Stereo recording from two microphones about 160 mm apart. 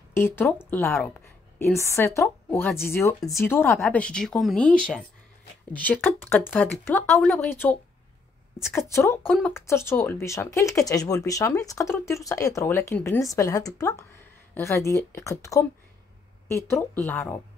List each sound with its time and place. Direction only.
0.1 s speech: 15° left (ahead or behind)
8.7 s speech: 15° left (ahead or behind)